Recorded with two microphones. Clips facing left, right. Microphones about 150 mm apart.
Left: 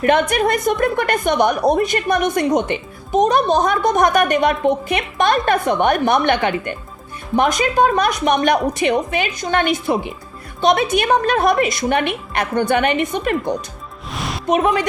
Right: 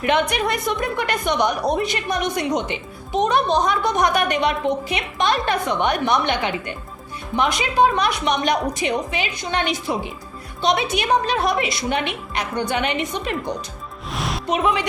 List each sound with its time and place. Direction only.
0.0 s a woman's voice: 45° left (ahead or behind)
14.1 s music: centre (ahead or behind)
14.4 s a woman's voice: 45° left (ahead or behind)